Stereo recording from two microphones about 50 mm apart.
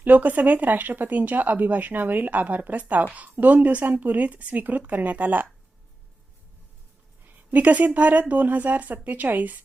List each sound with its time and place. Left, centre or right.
0.0 s speech: right
7.5 s speech: right